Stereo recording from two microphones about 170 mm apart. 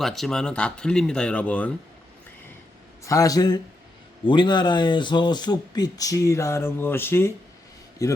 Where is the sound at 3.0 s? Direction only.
20° left (ahead or behind).